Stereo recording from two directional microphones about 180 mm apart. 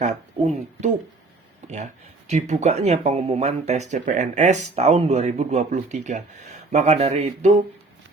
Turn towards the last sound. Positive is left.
turn(degrees=-35)  # may be behind; listen again after turning